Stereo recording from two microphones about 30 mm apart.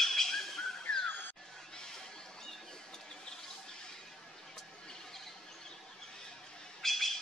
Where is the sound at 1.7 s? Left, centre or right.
Left.